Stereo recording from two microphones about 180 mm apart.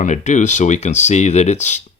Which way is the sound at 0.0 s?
40° left (ahead or behind).